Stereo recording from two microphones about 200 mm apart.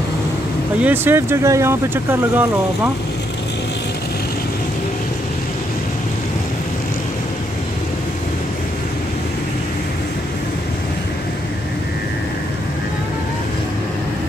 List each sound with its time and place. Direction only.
0.8 s speech: 10° right (ahead or behind)